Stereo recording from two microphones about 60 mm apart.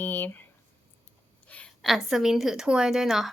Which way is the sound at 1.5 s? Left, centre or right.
Left.